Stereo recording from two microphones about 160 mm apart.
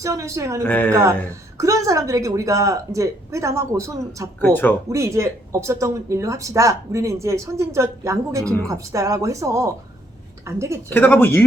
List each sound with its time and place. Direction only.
0.0 s speech: 20° right (ahead or behind)
0.6 s speech: 10° left (ahead or behind)
1.5 s speech: 20° right (ahead or behind)
4.4 s speech: 10° left (ahead or behind)
4.9 s speech: 20° right (ahead or behind)
10.8 s speech: 10° left (ahead or behind)